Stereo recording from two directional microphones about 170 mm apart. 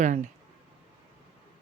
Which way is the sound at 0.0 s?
45° right (ahead or behind).